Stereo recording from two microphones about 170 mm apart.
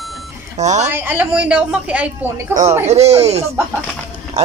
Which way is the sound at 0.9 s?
10° right (ahead or behind).